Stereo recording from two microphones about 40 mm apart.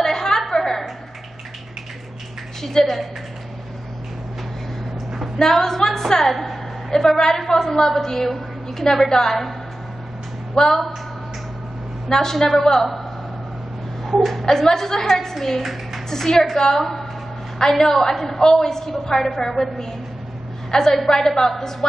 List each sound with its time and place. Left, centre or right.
0.0 s a sound: centre
2.6 s a woman's voice: centre
5.4 s a woman's voice: centre
10.5 s a woman's voice: centre
12.1 s a woman's voice: centre
14.0 s a sound: centre
14.4 s a woman's voice: centre
15.6 s a woman's voice: centre
16.1 s a woman's voice: centre